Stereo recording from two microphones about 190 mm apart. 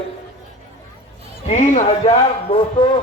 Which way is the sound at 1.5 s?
35° left (ahead or behind).